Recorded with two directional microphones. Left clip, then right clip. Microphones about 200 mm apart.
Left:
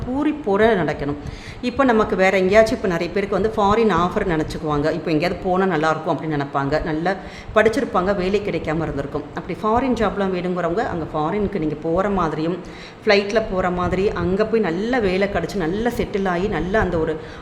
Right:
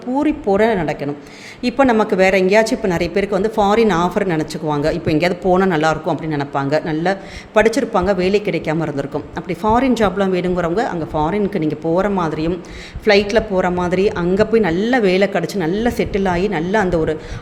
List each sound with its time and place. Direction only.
0.2 s a woman's voice: 10° right (ahead or behind)